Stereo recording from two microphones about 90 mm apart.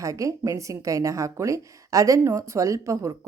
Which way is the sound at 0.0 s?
35° right (ahead or behind).